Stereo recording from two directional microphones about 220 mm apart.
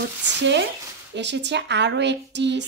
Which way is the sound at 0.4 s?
50° right (ahead or behind).